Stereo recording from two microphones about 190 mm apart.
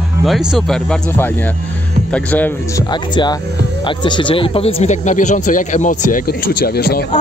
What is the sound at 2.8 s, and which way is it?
Speech, 25° left (ahead or behind).